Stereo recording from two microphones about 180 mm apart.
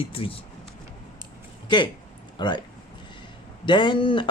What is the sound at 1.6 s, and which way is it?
Speech, 25° left (ahead or behind).